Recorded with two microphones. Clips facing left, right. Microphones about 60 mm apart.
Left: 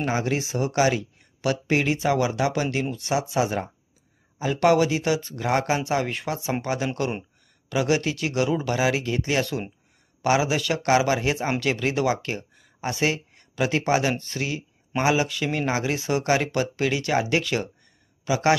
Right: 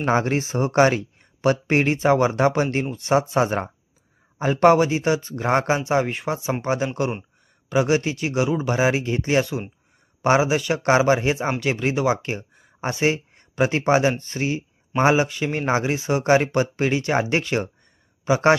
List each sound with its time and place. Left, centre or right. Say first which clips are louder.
0.0 s speech: right 4 dB; right; by 9.7 s centre
10.2 s a man's voice: right 3 dB; right